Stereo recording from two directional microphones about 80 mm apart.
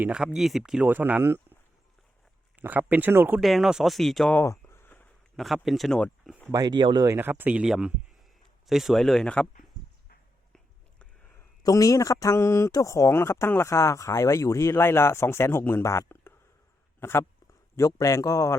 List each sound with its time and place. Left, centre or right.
0.3 s speech: centre
0.9 s speech: right
2.6 s speech: right
3.4 s speech: centre
4.7 s a sound: left
5.6 s speech: centre
6.5 s speech: right
6.7 s speech: right
7.2 s speech: right
7.5 s speech: centre
11.6 s speech: left
17.9 s speech: left